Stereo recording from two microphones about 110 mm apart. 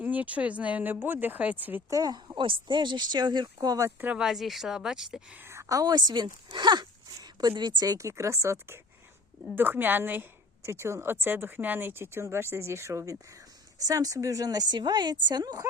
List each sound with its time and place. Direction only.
0.0 s speech: 15° right (ahead or behind)
1.9 s speech: 35° right (ahead or behind)
4.0 s speech: 10° right (ahead or behind)
5.5 s speech: 25° right (ahead or behind)